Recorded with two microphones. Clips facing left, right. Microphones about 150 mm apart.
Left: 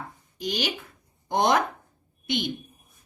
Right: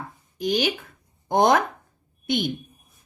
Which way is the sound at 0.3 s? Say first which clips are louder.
Right 6 dB; 50° right (ahead or behind).